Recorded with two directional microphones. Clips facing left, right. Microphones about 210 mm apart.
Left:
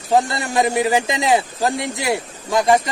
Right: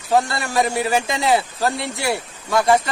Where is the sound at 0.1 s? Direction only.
20° left (ahead or behind).